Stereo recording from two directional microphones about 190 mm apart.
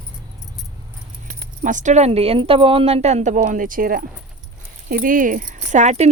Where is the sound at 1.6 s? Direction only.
40° right (ahead or behind).